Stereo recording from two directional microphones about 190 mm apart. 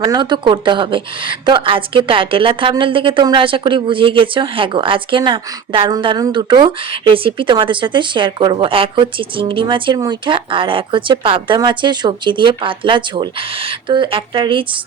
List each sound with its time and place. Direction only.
0.0 s a woman's voice: 20° right (ahead or behind)